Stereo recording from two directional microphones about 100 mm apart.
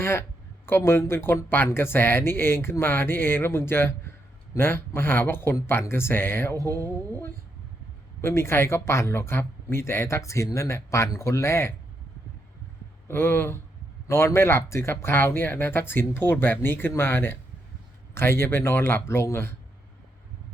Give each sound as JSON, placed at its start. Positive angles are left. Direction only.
{"t": 0.0, "sound": "speech", "side_deg": 25}
{"t": 13.1, "sound": "speech", "side_deg": 20}